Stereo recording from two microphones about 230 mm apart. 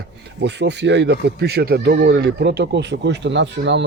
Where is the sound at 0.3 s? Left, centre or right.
Right.